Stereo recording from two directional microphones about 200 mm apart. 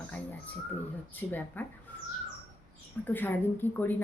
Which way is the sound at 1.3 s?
10° left (ahead or behind).